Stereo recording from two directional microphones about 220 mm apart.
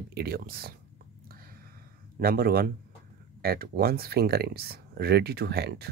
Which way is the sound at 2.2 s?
45° right (ahead or behind).